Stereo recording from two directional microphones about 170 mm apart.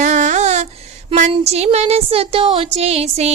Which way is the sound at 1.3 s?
40° right (ahead or behind).